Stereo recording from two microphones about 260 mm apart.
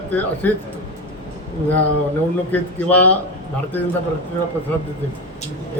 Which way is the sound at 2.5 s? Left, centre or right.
Centre.